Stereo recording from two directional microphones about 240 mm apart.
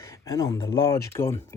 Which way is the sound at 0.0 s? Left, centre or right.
Centre.